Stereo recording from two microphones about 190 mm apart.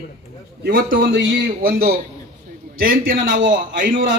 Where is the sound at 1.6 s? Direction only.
50° right (ahead or behind).